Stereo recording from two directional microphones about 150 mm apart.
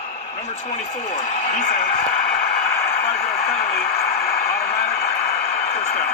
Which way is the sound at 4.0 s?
90° left.